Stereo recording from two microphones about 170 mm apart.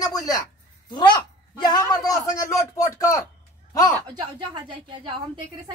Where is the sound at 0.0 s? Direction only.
20° left (ahead or behind).